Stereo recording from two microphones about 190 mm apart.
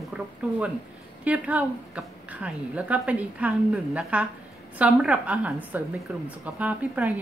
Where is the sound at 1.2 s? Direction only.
5° right (ahead or behind).